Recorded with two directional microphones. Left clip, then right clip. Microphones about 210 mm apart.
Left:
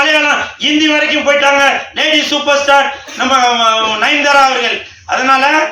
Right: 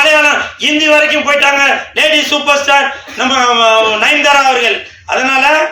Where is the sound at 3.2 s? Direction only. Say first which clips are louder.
Right 1 dB; 55° right (ahead or behind).